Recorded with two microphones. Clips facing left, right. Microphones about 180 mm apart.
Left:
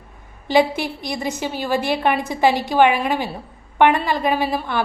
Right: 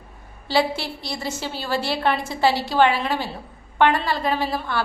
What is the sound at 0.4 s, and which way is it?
A woman's voice, 20° left (ahead or behind).